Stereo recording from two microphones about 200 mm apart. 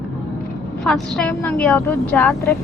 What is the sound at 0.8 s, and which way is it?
A woman's voice, 5° left (ahead or behind).